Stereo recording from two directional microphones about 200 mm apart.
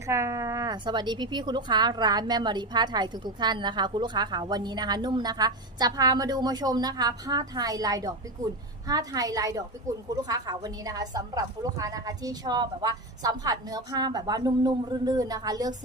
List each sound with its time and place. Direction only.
0.1 s a woman's voice: 15° right (ahead or behind)